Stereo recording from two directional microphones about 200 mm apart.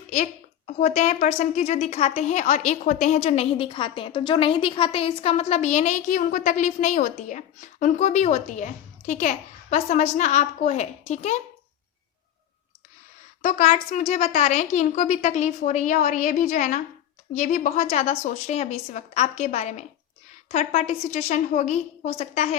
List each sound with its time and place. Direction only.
0.8 s a woman's voice: 35° left (ahead or behind)
13.4 s a woman's voice: 35° left (ahead or behind)